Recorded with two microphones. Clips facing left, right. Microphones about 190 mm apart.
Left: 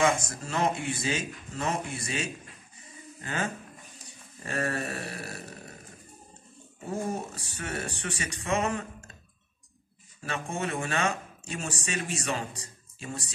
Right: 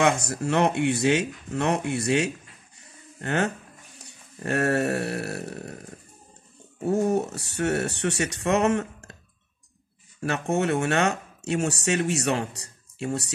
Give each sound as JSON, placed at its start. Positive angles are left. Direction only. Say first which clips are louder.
{"t": 0.0, "sound": "speech", "louder": "right 4 dB", "side_deg": -70}
{"t": 4.0, "sound": "a sound", "louder": "right 11 dB", "side_deg": -70}
{"t": 6.9, "sound": "speech", "louder": "right 9 dB", "side_deg": -70}
{"t": 10.2, "sound": "speech", "louder": "right 8 dB", "side_deg": -70}